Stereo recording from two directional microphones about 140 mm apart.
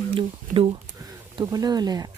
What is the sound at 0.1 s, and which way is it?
Speech, 40° right (ahead or behind).